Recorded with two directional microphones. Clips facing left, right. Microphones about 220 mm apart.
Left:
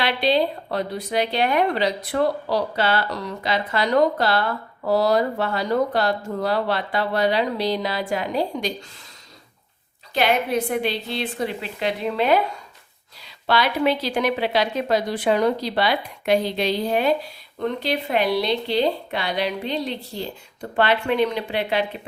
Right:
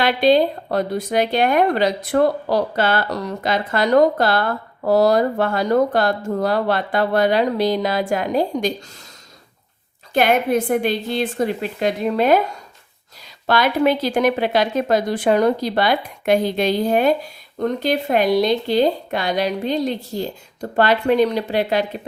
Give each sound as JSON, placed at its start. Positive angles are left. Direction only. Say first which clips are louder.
{"t": 0.0, "sound": "speech", "louder": "right 5 dB", "side_deg": -45}
{"t": 10.2, "sound": "speech", "louder": "right 4 dB", "side_deg": -50}